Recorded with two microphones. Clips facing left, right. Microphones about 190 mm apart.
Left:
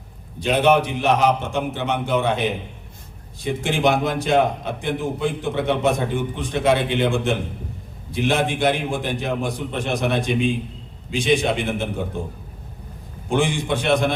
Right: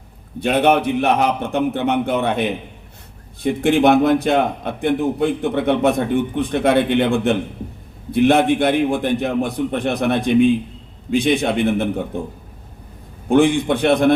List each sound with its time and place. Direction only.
0.3 s a man's voice: 55° right (ahead or behind)
13.2 s a man's voice: 60° right (ahead or behind)